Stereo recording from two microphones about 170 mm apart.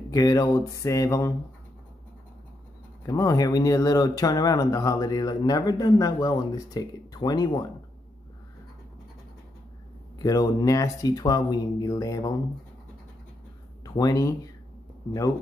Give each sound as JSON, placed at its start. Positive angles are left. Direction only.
{"t": 0.1, "sound": "speech", "side_deg": 20}
{"t": 3.1, "sound": "speech", "side_deg": 20}
{"t": 10.1, "sound": "speech", "side_deg": 20}
{"t": 13.8, "sound": "speech", "side_deg": 20}